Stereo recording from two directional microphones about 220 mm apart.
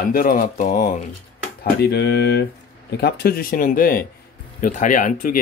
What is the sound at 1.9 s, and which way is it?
Speech, 50° left (ahead or behind).